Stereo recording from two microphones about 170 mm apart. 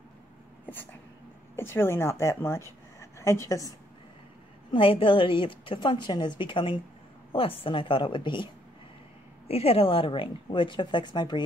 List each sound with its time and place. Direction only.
1.6 s speech: 15° left (ahead or behind)
3.0 s a sound: 15° left (ahead or behind)
4.7 s a woman's voice: 30° left (ahead or behind)
9.5 s a woman's voice: 35° left (ahead or behind)